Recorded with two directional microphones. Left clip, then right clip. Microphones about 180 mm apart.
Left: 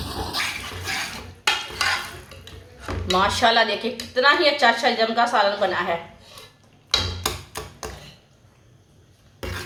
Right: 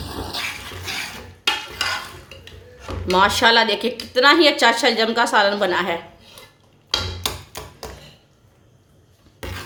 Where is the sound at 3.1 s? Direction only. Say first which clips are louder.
Right 3 dB; 65° right (ahead or behind).